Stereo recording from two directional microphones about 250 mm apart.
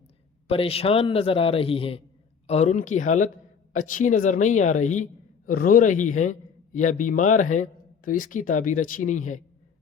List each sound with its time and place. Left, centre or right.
0.4 s a man's voice: left